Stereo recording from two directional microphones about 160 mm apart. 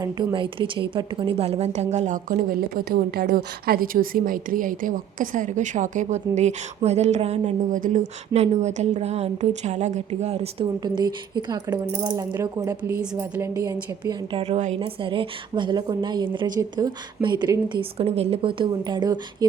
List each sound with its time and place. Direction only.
0.0 s a woman's voice: 25° right (ahead or behind); by 7.8 s 40° right (ahead or behind)
7.8 s a woman's voice: 50° right (ahead or behind)
10.8 s speech: 25° right (ahead or behind)
14.3 s a woman's voice: 40° right (ahead or behind)